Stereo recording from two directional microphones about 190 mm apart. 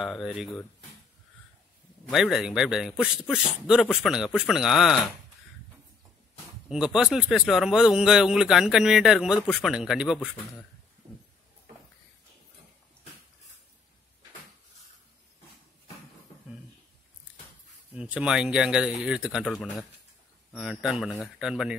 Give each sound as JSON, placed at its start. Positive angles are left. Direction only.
{"t": 0.0, "sound": "a man's voice", "side_deg": 0}
{"t": 2.0, "sound": "a man's voice", "side_deg": 0}
{"t": 6.7, "sound": "a man's voice", "side_deg": -5}
{"t": 11.0, "sound": "a sound", "side_deg": -15}
{"t": 17.9, "sound": "a man's voice", "side_deg": -5}